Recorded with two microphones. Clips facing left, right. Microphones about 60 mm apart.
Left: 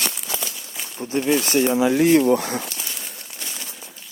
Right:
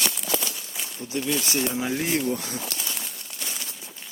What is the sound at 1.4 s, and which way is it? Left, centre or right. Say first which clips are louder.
Speech: left 8 dB; left.